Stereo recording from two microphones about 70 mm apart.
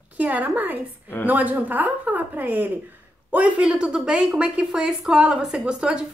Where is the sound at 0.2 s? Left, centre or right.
Right.